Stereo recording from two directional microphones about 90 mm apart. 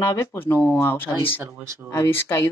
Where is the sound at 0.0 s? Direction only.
30° left (ahead or behind).